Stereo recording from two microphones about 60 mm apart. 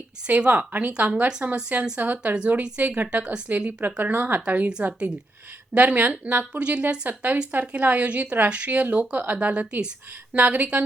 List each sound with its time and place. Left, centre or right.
0.3 s a woman's voice: right
4.1 s speech: right
4.4 s a woman's voice: right